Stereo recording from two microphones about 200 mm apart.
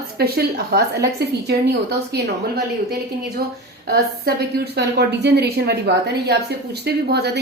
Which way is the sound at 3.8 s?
50° right (ahead or behind).